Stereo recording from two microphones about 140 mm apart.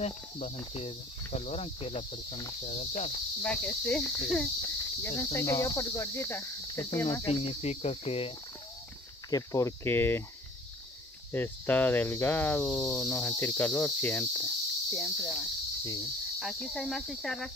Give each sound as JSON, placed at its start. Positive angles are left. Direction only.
{"t": 0.0, "sound": "speech", "side_deg": 50}
{"t": 3.4, "sound": "cricket", "side_deg": 10}
{"t": 4.3, "sound": "speech", "side_deg": 10}
{"t": 5.2, "sound": "cricket", "side_deg": 25}
{"t": 7.2, "sound": "speech", "side_deg": 40}
{"t": 9.3, "sound": "cricket", "side_deg": 20}
{"t": 11.3, "sound": "cricket", "side_deg": 15}
{"t": 16.3, "sound": "speech", "side_deg": 0}